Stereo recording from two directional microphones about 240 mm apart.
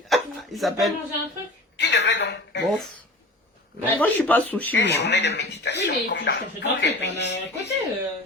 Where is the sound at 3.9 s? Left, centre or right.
Centre.